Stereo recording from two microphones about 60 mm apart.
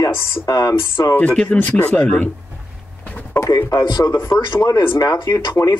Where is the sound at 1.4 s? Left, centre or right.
Left.